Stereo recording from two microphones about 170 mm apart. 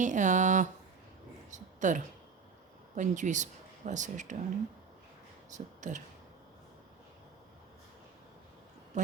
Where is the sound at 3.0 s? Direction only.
45° right (ahead or behind).